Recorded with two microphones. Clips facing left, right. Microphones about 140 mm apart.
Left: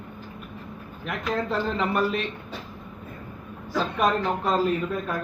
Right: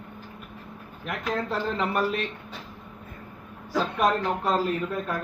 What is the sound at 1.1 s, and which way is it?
Speech, 5° right (ahead or behind).